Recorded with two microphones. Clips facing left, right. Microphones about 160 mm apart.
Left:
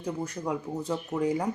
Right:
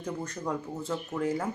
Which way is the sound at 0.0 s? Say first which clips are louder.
Left 2 dB; 10° left (ahead or behind).